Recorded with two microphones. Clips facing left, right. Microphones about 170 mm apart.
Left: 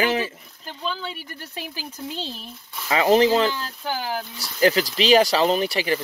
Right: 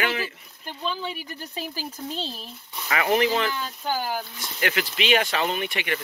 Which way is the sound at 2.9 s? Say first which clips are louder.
Left 5 dB; 30° left (ahead or behind).